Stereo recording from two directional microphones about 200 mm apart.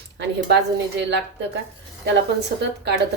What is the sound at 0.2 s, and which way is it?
A woman's voice, 60° right (ahead or behind).